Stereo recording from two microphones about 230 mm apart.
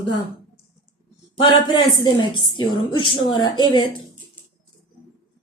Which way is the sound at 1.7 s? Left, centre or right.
Left.